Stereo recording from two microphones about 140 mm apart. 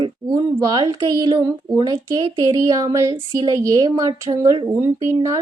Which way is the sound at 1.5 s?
20° right (ahead or behind).